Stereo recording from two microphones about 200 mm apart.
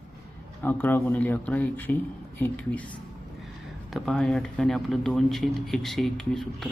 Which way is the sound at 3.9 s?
Centre (ahead or behind).